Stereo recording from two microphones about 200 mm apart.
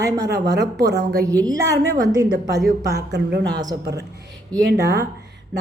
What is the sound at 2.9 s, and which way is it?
Speech, 55° right (ahead or behind).